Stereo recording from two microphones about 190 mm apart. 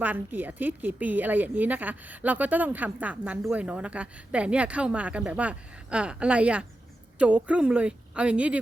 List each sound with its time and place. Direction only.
0.0 s a woman's voice: 10° right (ahead or behind)